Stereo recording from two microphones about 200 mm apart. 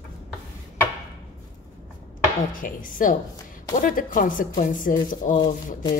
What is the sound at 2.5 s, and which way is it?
Speech, 40° left (ahead or behind).